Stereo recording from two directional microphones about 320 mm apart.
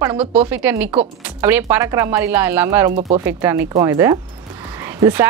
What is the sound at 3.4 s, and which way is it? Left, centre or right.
A woman's voice, centre.